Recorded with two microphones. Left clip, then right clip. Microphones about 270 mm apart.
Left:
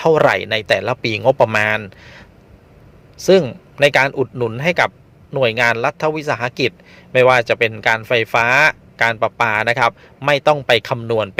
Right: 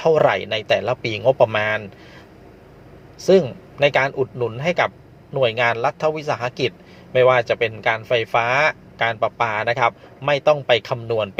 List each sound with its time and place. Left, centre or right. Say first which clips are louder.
0.0 s speech: left 3 dB; left